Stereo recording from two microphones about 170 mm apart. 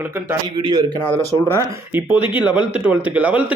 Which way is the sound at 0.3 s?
25° right (ahead or behind).